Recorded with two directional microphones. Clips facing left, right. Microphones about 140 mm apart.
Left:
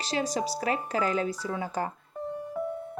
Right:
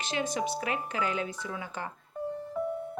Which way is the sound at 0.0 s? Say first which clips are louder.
Left 2 dB; 35° left (ahead or behind).